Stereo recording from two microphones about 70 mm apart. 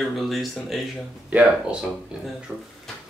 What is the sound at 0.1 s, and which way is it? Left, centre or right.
Speech, centre.